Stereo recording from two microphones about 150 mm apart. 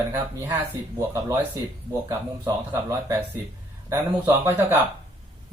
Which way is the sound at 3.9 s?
15° right (ahead or behind).